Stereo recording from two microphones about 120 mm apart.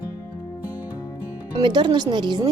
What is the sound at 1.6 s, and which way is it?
Speech, 40° right (ahead or behind).